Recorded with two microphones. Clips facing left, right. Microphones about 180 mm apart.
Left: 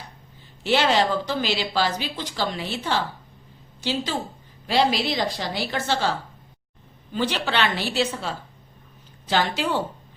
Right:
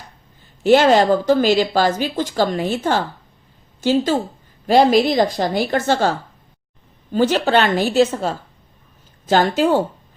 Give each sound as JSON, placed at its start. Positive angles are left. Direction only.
{"t": 0.6, "sound": "a woman's voice", "side_deg": -45}